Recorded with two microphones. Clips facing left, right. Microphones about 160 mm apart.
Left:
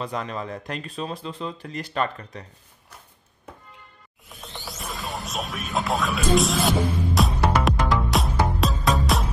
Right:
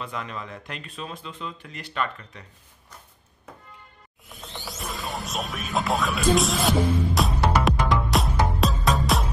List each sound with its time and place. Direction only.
0.0 s speech: 35° left (ahead or behind)
4.3 s music: centre (ahead or behind)